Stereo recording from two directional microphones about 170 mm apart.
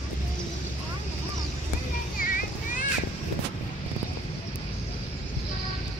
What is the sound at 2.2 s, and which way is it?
Vehicle, 55° left (ahead or behind).